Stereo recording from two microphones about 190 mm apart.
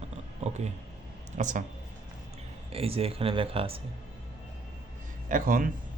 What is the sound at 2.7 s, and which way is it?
Speech, 30° right (ahead or behind).